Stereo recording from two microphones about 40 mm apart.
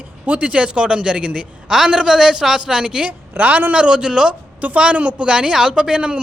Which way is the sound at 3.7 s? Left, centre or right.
Right.